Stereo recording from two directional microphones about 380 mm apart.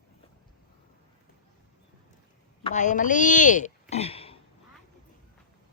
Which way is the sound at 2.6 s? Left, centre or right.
Centre.